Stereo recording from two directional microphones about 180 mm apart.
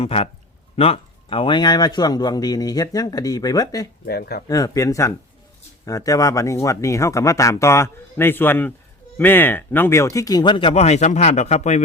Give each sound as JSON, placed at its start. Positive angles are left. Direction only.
{"t": 0.0, "sound": "speech", "side_deg": 35}
{"t": 4.0, "sound": "speech", "side_deg": 60}
{"t": 4.4, "sound": "speech", "side_deg": 20}